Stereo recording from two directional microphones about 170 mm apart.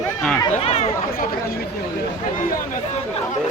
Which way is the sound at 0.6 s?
40° left (ahead or behind).